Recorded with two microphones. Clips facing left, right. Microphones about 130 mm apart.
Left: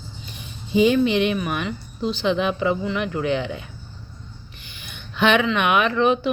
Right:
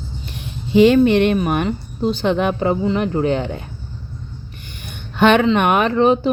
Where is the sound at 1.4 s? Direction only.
45° right (ahead or behind).